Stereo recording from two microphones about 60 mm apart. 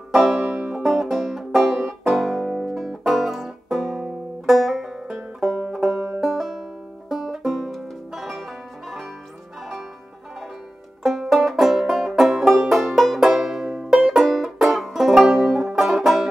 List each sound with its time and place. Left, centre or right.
0.1 s banjo: centre
0.5 s banjo: right
0.8 s music: centre
5.4 s banjo: centre
6.2 s music: centre
11.0 s banjo: centre
12.7 s music: centre